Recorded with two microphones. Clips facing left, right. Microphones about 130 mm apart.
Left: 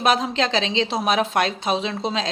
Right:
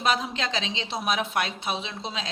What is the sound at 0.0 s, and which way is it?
A woman's voice, 85° left.